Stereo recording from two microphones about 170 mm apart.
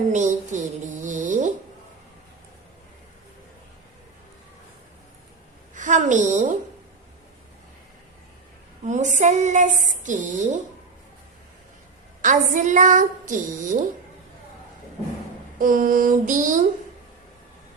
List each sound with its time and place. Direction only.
0.1 s a woman's voice: 45° right (ahead or behind)
1.0 s a sound: 50° right (ahead or behind)
5.7 s a woman's voice: 50° right (ahead or behind)
8.9 s a woman's voice: 45° right (ahead or behind)
12.2 s a woman's voice: 50° right (ahead or behind)
15.5 s a woman's voice: 55° right (ahead or behind)